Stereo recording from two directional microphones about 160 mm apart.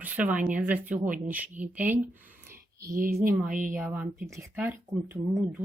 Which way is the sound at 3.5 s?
55° right (ahead or behind).